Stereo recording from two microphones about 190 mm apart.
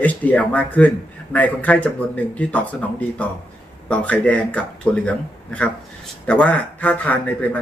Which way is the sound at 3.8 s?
5° left (ahead or behind).